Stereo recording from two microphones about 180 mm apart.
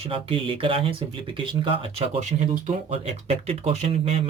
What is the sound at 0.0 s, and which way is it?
Speech, 30° right (ahead or behind).